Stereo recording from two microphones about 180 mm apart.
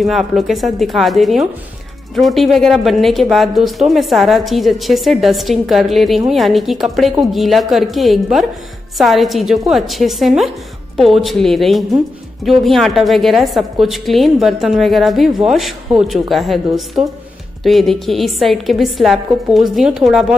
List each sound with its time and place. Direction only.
0.0 s speech: centre (ahead or behind)